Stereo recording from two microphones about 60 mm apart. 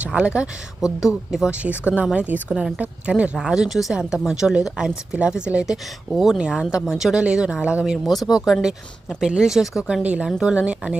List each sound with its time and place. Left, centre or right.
0.1 s speech: centre
1.0 s speech: centre
1.5 s speech: right
3.4 s speech: centre
5.7 s speech: centre
6.4 s speech: centre
8.0 s speech: centre
9.2 s speech: centre
10.0 s speech: right